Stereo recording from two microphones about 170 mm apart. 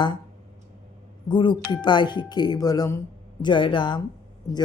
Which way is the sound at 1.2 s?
30° left (ahead or behind).